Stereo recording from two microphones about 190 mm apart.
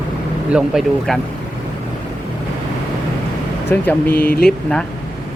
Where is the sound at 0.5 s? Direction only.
5° right (ahead or behind).